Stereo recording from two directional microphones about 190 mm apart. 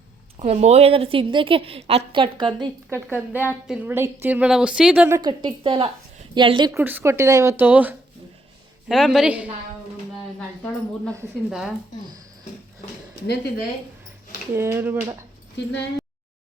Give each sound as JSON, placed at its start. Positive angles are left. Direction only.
{"t": 0.3, "sound": "a woman's voice", "side_deg": -35}
{"t": 2.9, "sound": "a woman's voice", "side_deg": -10}
{"t": 6.7, "sound": "a woman's voice", "side_deg": -10}
{"t": 11.4, "sound": "a woman's voice", "side_deg": 0}
{"t": 13.2, "sound": "speech", "side_deg": 60}
{"t": 14.5, "sound": "a woman's voice", "side_deg": -10}